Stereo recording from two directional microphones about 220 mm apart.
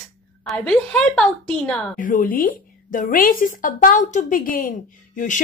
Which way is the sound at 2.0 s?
40° left (ahead or behind).